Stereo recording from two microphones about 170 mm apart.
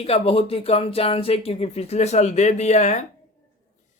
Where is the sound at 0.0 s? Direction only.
35° left (ahead or behind).